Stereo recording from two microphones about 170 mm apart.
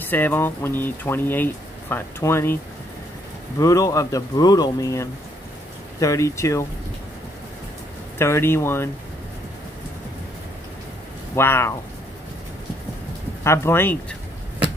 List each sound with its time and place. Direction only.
0.0 s speech: 10° left (ahead or behind)
3.5 s speech: 20° left (ahead or behind)
8.2 s speech: 15° left (ahead or behind)
11.3 s speech: 15° left (ahead or behind)
13.4 s speech: 15° left (ahead or behind)